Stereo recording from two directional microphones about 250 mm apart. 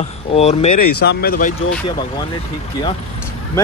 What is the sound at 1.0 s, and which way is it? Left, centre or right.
Speech, left.